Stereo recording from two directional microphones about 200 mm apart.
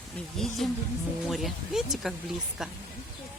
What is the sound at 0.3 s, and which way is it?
Speech, centre (ahead or behind).